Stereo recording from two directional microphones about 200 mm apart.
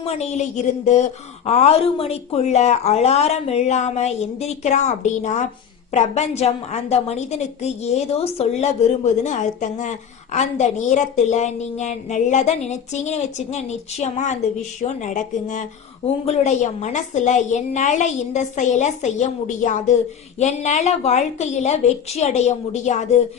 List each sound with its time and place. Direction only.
0.0 s a woman's voice: 30° left (ahead or behind)